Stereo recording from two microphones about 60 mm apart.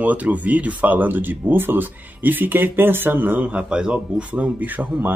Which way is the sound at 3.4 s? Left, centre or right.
Centre.